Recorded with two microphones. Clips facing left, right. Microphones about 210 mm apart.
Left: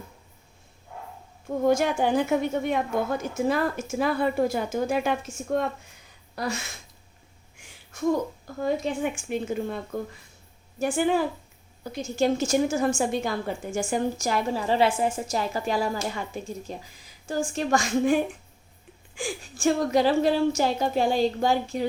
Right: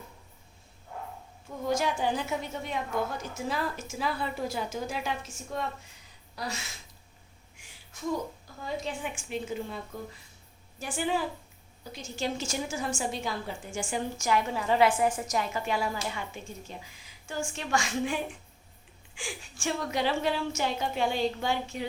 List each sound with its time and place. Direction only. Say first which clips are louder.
1.5 s a woman's voice: left 7 dB; 55° left (ahead or behind)
6.3 s a sound: left 7 dB; 55° left (ahead or behind)
9.3 s a woman's voice: left 6 dB; 50° left (ahead or behind)
14.2 s a woman's voice: left 2 dB; 35° left (ahead or behind)